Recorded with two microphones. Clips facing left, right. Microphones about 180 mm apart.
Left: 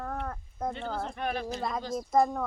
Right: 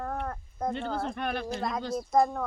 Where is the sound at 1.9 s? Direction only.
Centre (ahead or behind).